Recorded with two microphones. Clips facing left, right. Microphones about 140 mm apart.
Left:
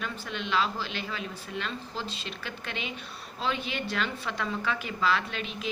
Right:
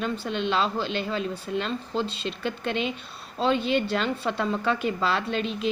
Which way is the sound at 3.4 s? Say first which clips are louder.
Right 9 dB; 30° right (ahead or behind).